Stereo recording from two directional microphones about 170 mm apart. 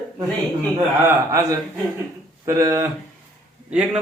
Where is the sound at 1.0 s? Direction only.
15° right (ahead or behind).